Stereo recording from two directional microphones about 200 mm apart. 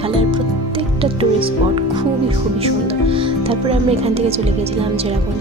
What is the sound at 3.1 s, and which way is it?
Speech, 30° right (ahead or behind).